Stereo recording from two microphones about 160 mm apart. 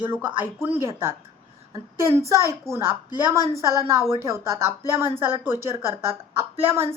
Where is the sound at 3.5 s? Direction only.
20° right (ahead or behind).